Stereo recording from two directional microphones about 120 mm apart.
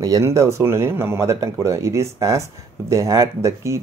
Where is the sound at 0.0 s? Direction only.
25° right (ahead or behind).